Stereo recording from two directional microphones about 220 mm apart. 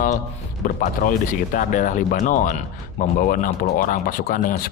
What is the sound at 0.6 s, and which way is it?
Speech, 40° left (ahead or behind).